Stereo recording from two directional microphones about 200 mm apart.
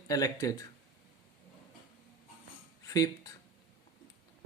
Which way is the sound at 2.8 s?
20° left (ahead or behind).